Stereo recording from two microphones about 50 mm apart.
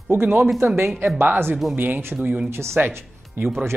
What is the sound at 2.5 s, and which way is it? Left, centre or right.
Speech, right.